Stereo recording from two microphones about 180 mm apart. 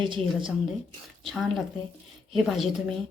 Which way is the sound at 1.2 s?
Centre (ahead or behind).